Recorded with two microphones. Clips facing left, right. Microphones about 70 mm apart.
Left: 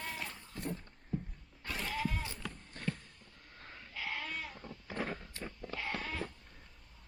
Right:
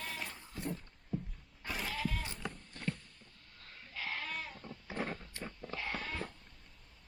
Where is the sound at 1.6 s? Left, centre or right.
Centre.